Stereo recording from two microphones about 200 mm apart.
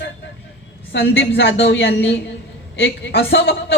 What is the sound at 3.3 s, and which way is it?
Speech, 70° left (ahead or behind).